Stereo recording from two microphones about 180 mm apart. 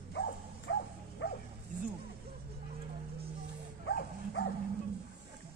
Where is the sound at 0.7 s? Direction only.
90° left.